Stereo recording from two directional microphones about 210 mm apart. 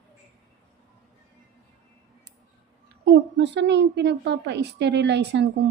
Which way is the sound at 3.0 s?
55° right (ahead or behind).